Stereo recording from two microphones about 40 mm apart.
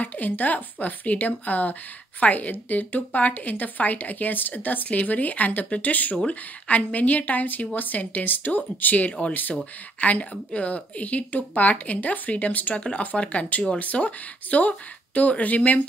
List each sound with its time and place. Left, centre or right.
0.0 s a woman's voice: left